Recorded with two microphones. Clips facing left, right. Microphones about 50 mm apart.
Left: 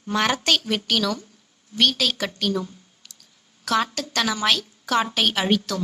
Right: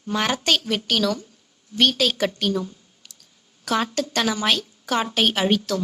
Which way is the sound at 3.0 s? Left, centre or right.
Centre.